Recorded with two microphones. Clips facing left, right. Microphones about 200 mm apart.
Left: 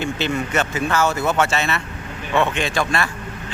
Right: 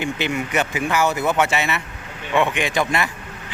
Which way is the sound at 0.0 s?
15° right (ahead or behind).